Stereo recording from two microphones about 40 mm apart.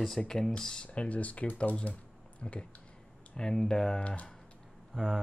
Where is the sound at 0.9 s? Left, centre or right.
Left.